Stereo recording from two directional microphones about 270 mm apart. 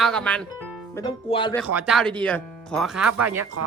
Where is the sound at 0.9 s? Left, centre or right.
Centre.